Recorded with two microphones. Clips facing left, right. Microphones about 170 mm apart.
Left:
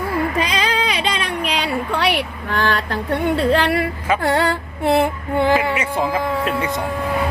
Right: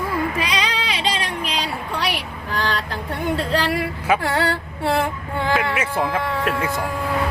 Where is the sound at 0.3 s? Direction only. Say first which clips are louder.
Left 4 dB; 50° left (ahead or behind).